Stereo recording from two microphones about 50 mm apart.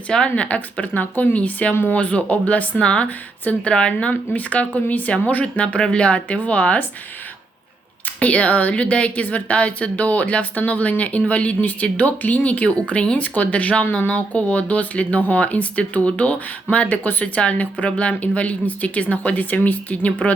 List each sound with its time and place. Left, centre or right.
0.1 s speech: centre
0.4 s speech: left
4.1 s speech: left
8.2 s speech: left